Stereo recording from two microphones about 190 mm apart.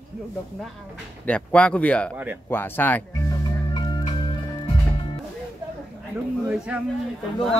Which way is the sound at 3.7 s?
20° left (ahead or behind).